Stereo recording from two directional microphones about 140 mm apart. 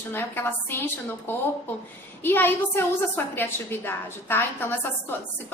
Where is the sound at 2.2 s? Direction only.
15° left (ahead or behind).